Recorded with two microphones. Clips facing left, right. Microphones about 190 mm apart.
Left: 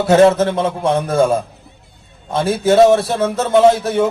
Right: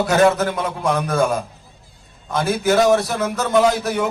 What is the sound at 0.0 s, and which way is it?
Speech, 25° left (ahead or behind).